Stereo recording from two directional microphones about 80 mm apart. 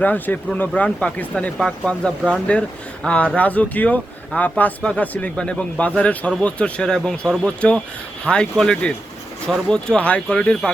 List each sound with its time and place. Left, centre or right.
0.0 s speech: centre
1.5 s speech: centre